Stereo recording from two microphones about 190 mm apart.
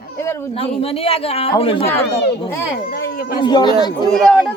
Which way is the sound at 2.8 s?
55° left (ahead or behind).